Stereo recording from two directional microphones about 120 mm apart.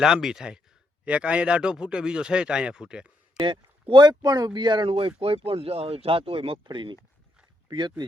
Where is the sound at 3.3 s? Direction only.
40° right (ahead or behind).